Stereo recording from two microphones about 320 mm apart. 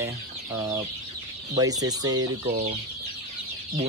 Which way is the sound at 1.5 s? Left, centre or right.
Centre.